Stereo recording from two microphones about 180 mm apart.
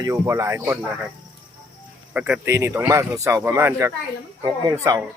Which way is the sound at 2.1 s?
5° right (ahead or behind).